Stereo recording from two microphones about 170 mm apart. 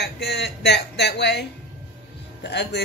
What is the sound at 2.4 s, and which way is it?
Speech, 85° left.